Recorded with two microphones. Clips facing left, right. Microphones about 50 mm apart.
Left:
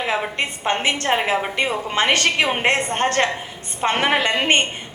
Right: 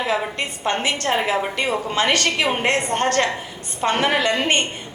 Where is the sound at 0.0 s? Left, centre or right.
Left.